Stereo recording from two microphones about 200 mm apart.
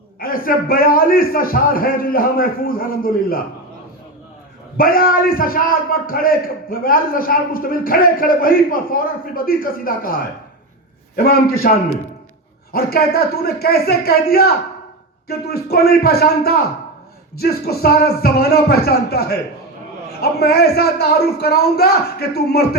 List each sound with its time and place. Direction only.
0.2 s a man's voice: 45° left (ahead or behind)
4.8 s a man's voice: 45° left (ahead or behind)
11.2 s a man's voice: 50° left (ahead or behind)
12.7 s a man's voice: 50° left (ahead or behind)